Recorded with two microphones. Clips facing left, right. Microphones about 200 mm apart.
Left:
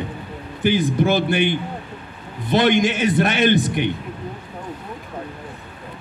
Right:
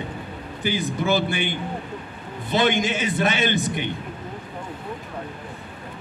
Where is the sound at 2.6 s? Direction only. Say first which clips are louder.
Left 4 dB; 50° left (ahead or behind).